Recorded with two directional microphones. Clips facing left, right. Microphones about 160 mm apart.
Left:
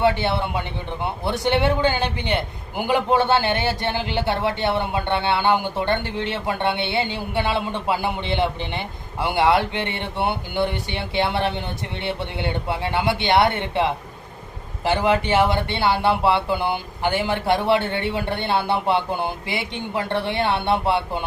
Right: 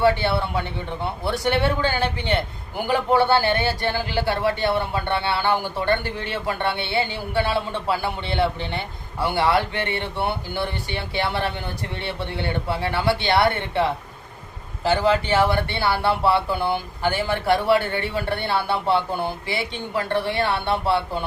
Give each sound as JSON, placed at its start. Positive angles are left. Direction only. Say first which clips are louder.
{"t": 0.0, "sound": "a man's voice", "louder": "even", "side_deg": 20}
{"t": 14.8, "sound": "a man's voice", "louder": "even", "side_deg": 15}